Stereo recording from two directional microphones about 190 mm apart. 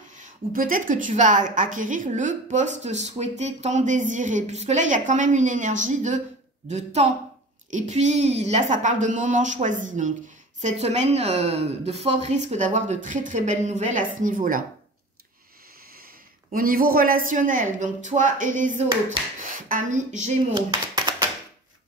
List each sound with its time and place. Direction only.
0.2 s a woman's voice: 45° right (ahead or behind)
16.5 s a woman's voice: 50° right (ahead or behind)
20.5 s speech: 20° right (ahead or behind)